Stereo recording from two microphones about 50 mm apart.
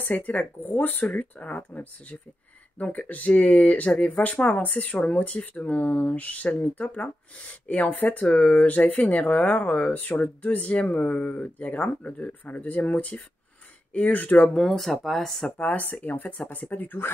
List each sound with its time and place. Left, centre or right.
0.0 s speech: left
14.5 s speech: centre
15.5 s speech: left